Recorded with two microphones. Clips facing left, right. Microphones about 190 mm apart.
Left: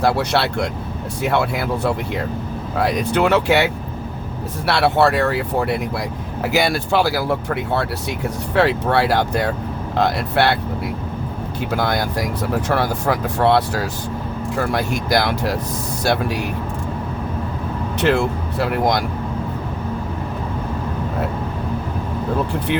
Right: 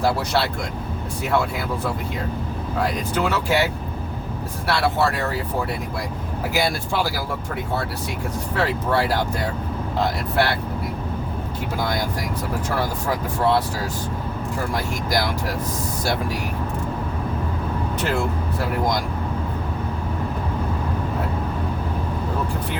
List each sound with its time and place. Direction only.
0.0 s speech: 70° left (ahead or behind)
2.7 s speech: 70° left (ahead or behind)
11.8 s speech: 70° left (ahead or behind)
18.6 s speech: 70° left (ahead or behind)